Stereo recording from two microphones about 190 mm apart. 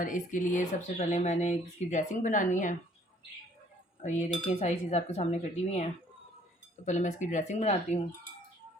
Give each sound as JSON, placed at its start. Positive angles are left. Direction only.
{"t": 0.0, "sound": "speech", "side_deg": 45}
{"t": 4.0, "sound": "speech", "side_deg": 40}